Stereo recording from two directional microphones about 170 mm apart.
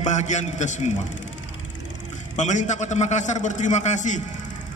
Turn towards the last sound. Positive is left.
turn(degrees=45)  # may be behind; listen again after turning